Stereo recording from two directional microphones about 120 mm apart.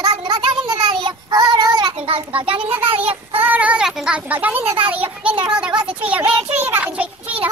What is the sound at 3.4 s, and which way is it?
A child's voice, 15° right (ahead or behind).